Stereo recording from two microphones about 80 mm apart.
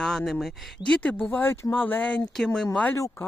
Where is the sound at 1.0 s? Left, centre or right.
Centre.